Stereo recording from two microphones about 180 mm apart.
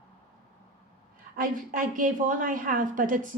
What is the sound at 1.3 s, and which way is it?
A woman's voice, 50° right (ahead or behind).